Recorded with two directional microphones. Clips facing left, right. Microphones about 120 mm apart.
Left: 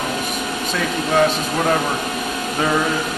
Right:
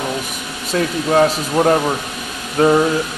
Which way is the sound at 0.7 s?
35° right (ahead or behind).